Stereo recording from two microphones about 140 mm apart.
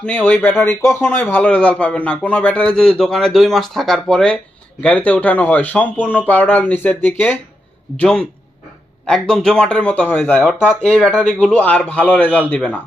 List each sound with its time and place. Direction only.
0.0 s speech: 10° left (ahead or behind)